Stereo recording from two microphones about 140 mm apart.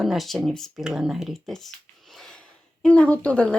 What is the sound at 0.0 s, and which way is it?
Speech, centre (ahead or behind).